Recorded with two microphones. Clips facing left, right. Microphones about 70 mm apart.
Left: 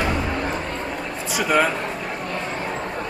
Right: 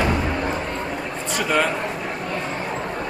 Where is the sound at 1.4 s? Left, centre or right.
Centre.